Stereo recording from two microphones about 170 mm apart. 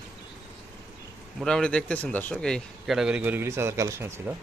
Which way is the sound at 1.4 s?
5° left (ahead or behind).